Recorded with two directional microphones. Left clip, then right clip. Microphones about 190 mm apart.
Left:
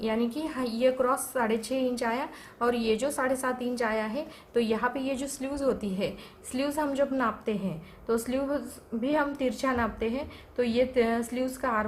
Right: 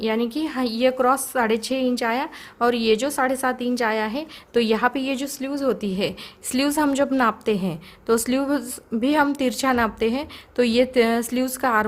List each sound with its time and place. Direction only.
0.0 s a woman's voice: 45° right (ahead or behind)